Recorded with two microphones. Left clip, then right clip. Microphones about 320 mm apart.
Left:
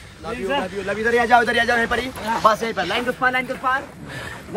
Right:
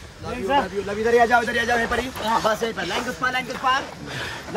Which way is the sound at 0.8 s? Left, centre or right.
Centre.